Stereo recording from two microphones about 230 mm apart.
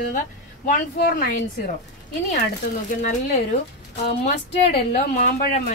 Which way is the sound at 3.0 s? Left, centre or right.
Left.